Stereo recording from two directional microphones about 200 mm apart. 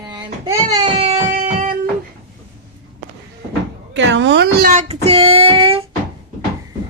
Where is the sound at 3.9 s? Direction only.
65° right (ahead or behind).